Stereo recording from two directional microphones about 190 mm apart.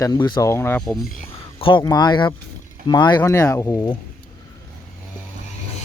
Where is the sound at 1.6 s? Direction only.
25° left (ahead or behind).